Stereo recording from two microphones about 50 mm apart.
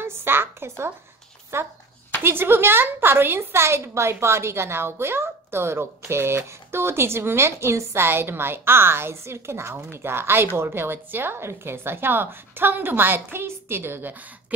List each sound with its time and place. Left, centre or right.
0.0 s a sound: right
1.5 s a woman's voice: right
2.2 s a woman's voice: right
9.8 s a woman's voice: right